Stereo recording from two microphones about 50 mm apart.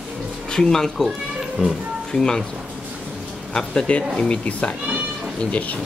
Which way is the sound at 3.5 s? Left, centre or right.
Centre.